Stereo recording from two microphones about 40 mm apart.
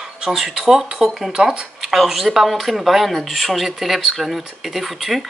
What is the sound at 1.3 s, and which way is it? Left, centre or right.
Speech, centre.